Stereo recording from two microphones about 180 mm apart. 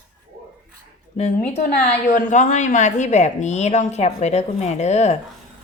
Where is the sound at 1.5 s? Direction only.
40° left (ahead or behind).